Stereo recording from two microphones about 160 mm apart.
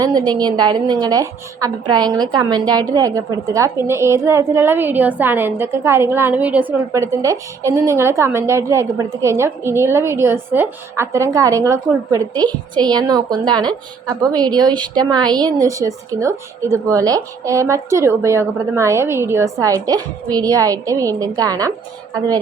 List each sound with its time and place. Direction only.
0.0 s a woman's voice: 25° right (ahead or behind)